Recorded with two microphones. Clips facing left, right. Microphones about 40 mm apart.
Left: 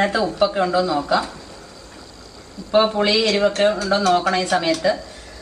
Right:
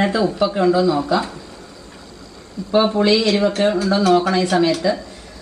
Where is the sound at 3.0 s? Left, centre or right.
Centre.